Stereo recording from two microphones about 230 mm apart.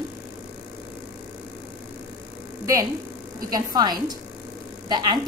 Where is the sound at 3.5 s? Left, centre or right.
Centre.